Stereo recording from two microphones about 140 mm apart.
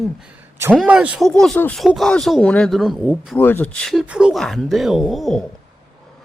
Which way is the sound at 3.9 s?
5° right (ahead or behind).